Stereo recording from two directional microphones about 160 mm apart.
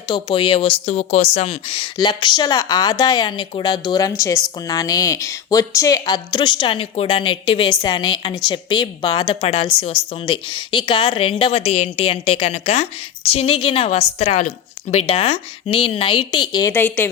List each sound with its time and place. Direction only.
0.1 s speech: 30° left (ahead or behind)
16.7 s speech: 15° left (ahead or behind)